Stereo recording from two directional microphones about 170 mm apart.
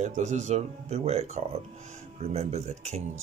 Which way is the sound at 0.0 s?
45° right (ahead or behind).